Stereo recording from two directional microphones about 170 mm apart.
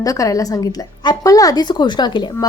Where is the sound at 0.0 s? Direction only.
20° left (ahead or behind).